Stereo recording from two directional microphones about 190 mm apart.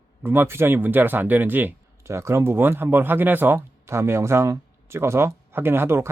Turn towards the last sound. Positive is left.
turn(degrees=-10)  # may be behind; listen again after turning